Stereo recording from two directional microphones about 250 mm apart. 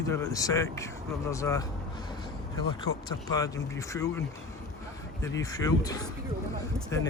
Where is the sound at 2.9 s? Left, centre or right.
Left.